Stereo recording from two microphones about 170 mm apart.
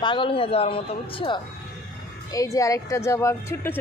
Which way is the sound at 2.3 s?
20° left (ahead or behind).